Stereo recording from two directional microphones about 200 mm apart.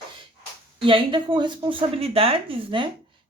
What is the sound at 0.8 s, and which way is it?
Speech, 25° right (ahead or behind).